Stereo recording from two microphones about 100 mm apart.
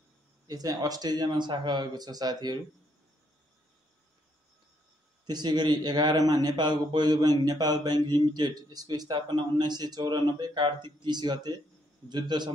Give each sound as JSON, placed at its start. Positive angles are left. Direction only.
{"t": 0.5, "sound": "a man's voice", "side_deg": -40}
{"t": 5.2, "sound": "a man's voice", "side_deg": -45}